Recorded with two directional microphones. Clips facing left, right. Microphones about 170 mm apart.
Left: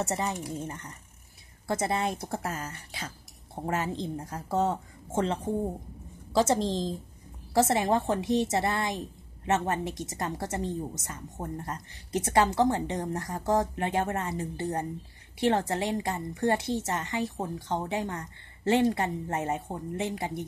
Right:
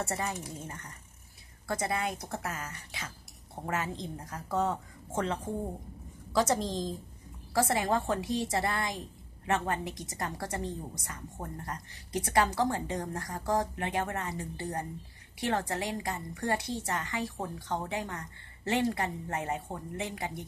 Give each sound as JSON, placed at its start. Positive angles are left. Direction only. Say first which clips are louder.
{"t": 0.0, "sound": "a woman's voice", "louder": "left 4 dB", "side_deg": 25}
{"t": 1.7, "sound": "a woman's voice", "louder": "left 4 dB", "side_deg": 25}